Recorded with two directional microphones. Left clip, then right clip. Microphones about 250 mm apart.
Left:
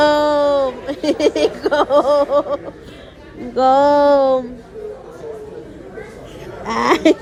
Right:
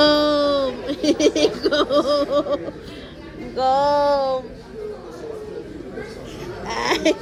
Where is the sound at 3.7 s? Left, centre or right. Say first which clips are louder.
Left 6 dB; centre.